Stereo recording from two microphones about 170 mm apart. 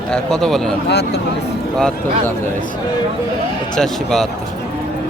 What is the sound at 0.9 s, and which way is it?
Speech, 80° left.